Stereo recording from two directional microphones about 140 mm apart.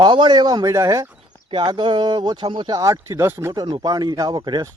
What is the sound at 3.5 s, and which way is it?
Speech, 35° right (ahead or behind).